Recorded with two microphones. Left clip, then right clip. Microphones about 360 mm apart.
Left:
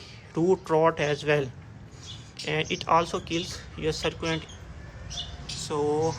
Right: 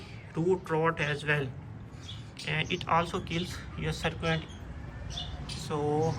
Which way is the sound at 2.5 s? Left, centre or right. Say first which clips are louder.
Left 5 dB; centre.